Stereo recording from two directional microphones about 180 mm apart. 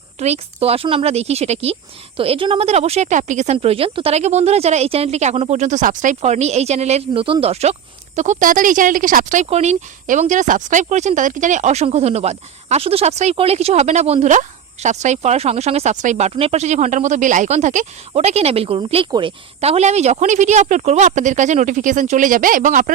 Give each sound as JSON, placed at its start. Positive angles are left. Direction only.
{"t": 0.2, "sound": "a woman's voice", "side_deg": -35}